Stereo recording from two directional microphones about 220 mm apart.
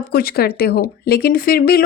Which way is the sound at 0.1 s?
45° left (ahead or behind).